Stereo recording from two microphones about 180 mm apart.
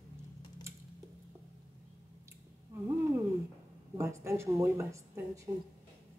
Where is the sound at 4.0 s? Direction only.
15° right (ahead or behind).